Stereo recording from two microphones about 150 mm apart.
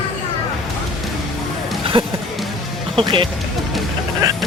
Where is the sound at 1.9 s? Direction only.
35° right (ahead or behind).